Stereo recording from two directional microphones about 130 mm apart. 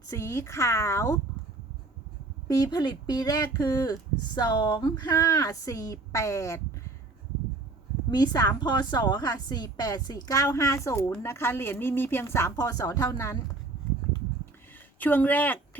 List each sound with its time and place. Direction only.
0.1 s speech: 20° left (ahead or behind)
2.5 s a woman's voice: 30° left (ahead or behind)
8.1 s a woman's voice: 30° left (ahead or behind)
14.9 s speech: 15° left (ahead or behind)